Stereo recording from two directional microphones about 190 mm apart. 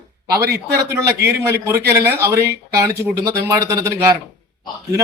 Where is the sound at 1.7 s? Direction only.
15° right (ahead or behind).